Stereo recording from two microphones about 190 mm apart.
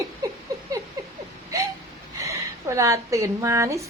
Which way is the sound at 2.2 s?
15° right (ahead or behind).